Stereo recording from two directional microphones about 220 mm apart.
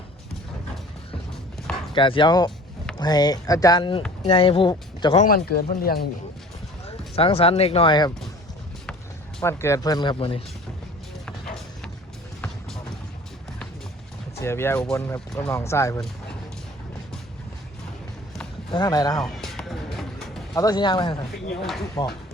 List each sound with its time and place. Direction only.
1.9 s speech: 20° left (ahead or behind)
5.2 s speech: 40° left (ahead or behind)
6.8 s speech: 25° left (ahead or behind)
9.4 s speech: 10° left (ahead or behind)
11.3 s music: 5° left (ahead or behind)
14.3 s speech: 10° left (ahead or behind)
18.7 s speech: 20° left (ahead or behind)
19.2 s music: centre (ahead or behind)
20.6 s speech: 20° left (ahead or behind)
21.6 s speech: centre (ahead or behind)